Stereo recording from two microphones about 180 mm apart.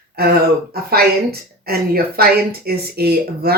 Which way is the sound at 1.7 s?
60° right (ahead or behind).